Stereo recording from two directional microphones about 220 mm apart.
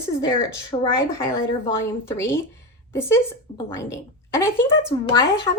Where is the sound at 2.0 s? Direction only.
10° left (ahead or behind).